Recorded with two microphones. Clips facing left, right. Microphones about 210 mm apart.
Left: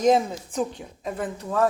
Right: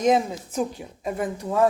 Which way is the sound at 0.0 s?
5° right (ahead or behind).